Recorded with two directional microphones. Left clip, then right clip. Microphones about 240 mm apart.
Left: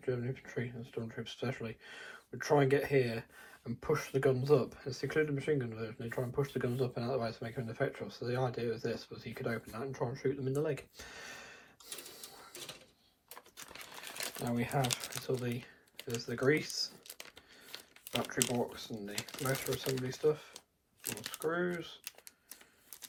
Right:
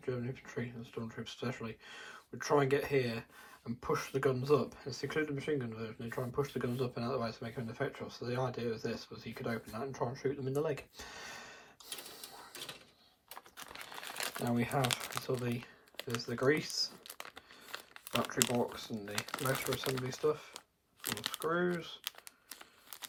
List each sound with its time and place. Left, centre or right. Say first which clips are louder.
0.0 s speech: left 2 dB; centre; by 12.6 s right
14.3 s speech: even; centre
17.7 s crumpling: right 1 dB; centre
18.4 s speech: right 1 dB; centre